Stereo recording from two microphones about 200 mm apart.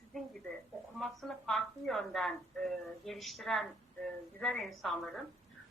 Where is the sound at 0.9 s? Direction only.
Centre (ahead or behind).